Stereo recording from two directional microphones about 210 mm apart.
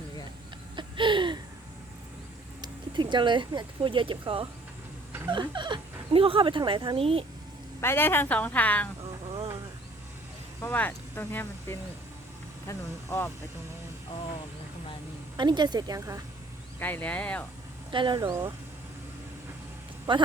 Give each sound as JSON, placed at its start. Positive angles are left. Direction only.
{"t": 0.8, "sound": "a sound", "side_deg": -25}
{"t": 2.6, "sound": "speech", "side_deg": -20}
{"t": 7.8, "sound": "a woman's voice", "side_deg": 10}
{"t": 9.3, "sound": "a sound", "side_deg": -15}
{"t": 10.6, "sound": "a woman's voice", "side_deg": 10}
{"t": 15.4, "sound": "speech", "side_deg": -20}
{"t": 16.8, "sound": "a woman's voice", "side_deg": 10}
{"t": 17.9, "sound": "speech", "side_deg": -20}
{"t": 20.1, "sound": "speech", "side_deg": -25}